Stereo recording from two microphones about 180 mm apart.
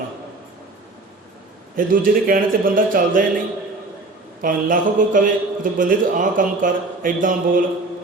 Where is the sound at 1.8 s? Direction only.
50° right (ahead or behind).